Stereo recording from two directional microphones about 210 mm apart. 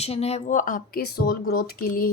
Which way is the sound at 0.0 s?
30° left (ahead or behind).